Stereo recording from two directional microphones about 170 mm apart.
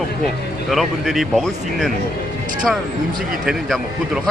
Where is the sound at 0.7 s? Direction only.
Centre (ahead or behind).